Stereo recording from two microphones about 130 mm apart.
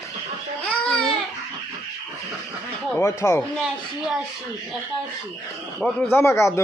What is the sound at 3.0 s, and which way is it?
Speech, 25° left (ahead or behind).